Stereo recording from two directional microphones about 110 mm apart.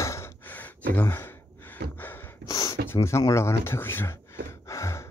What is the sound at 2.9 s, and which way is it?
Gasp, 25° left (ahead or behind).